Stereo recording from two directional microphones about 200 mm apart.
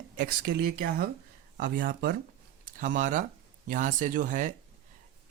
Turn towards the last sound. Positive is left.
turn(degrees=-40)  # may be behind; listen again after turning